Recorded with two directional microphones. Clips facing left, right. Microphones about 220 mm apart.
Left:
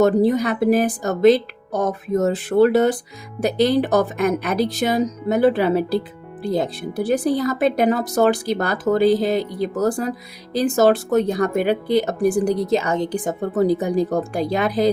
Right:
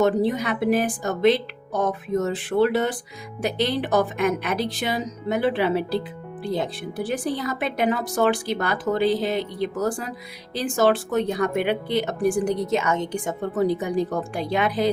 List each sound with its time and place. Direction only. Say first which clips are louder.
0.0 s speech: left 5 dB; 40° left (ahead or behind)